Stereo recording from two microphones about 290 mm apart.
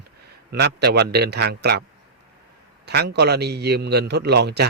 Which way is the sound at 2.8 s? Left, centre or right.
Right.